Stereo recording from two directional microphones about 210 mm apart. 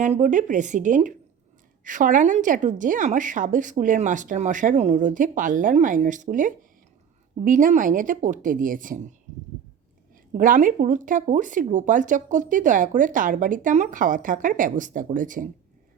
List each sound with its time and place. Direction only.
0.0 s speech: 35° right (ahead or behind)
10.3 s speech: 40° right (ahead or behind)